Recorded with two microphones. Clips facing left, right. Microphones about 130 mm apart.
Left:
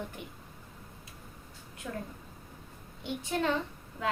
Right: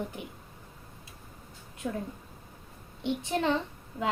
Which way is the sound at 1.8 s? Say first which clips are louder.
Right 5 dB; 30° right (ahead or behind).